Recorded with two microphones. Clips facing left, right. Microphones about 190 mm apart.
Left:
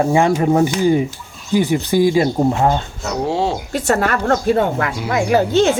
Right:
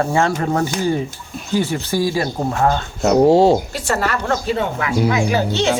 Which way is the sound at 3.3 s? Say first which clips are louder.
Right 6 dB; 40° right (ahead or behind).